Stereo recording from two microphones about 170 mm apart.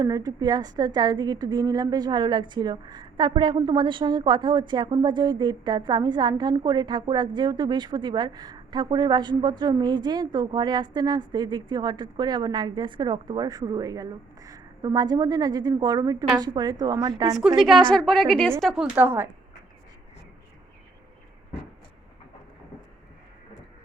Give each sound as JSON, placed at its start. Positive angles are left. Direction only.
{"t": 0.0, "sound": "a woman's voice", "side_deg": -20}
{"t": 17.6, "sound": "a woman's voice", "side_deg": 0}